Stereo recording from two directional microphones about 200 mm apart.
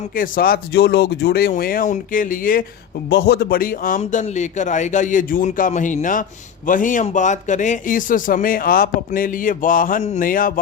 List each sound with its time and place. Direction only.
0.2 s a man's voice: 45° left (ahead or behind)